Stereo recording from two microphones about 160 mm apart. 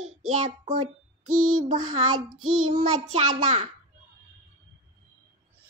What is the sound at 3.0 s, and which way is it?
Child singing, 45° right (ahead or behind).